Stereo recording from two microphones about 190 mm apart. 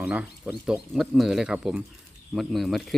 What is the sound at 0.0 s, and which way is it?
Speech, 5° right (ahead or behind).